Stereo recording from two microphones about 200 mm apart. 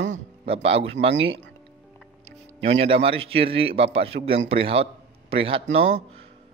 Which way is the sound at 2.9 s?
30° right (ahead or behind).